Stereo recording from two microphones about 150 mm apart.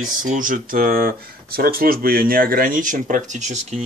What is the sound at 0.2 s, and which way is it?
Speech, 65° right (ahead or behind).